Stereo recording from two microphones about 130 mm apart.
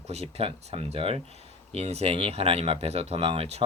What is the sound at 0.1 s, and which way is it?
Speech, 50° right (ahead or behind).